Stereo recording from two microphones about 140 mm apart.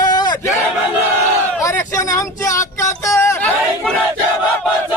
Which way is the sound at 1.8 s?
20° left (ahead or behind).